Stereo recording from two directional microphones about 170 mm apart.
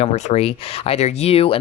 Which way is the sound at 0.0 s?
40° left (ahead or behind).